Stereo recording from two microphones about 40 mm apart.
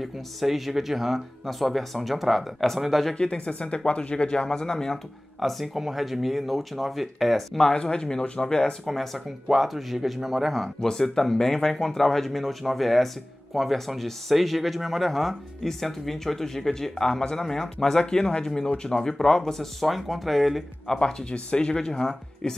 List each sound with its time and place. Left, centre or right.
0.0 s speech: centre
3.2 s speech: left
5.4 s speech: centre
7.7 s speech: left
8.8 s speech: centre
10.8 s speech: centre
20.8 s speech: centre
21.3 s speech: left